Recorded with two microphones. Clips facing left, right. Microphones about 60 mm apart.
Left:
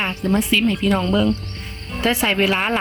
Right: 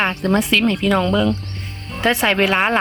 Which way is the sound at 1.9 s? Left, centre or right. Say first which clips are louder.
Right 2 dB; right.